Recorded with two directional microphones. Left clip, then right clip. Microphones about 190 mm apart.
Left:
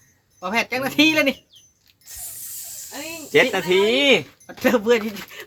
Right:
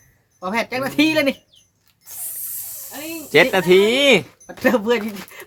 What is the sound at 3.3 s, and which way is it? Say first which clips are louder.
Speech: right 4 dB; 35° right (ahead or behind).